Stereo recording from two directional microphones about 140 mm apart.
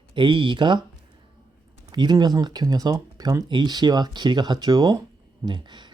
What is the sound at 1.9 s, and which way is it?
Speech, 30° right (ahead or behind).